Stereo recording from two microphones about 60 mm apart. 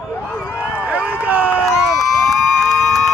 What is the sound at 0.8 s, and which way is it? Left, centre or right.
Run, right.